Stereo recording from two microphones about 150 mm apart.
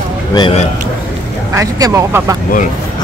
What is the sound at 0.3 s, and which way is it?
Speech, 30° left (ahead or behind).